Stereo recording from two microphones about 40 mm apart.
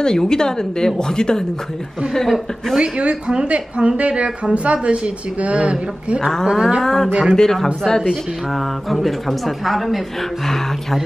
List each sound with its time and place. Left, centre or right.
0.0 s speech: centre
2.2 s a woman's voice: centre
2.8 s a woman's voice: right
6.4 s a sound: centre
6.8 s speech: centre
7.1 s a woman's voice: right
7.5 s speech: centre
9.7 s a woman's voice: centre